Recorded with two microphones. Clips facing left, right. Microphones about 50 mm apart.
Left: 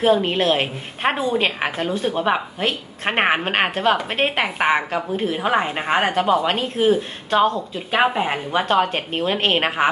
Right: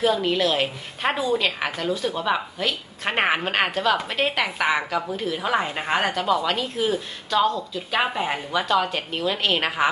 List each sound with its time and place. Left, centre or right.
0.0 s a woman's voice: left